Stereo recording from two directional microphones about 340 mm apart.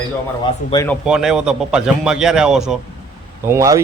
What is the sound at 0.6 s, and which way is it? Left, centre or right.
A man's voice, centre.